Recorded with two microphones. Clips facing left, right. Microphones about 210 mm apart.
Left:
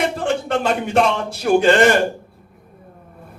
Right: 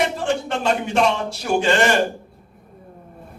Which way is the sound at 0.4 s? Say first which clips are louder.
Left 2 dB; 55° left (ahead or behind).